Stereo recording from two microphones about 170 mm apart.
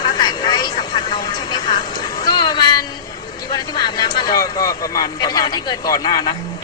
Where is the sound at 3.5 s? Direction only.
25° left (ahead or behind).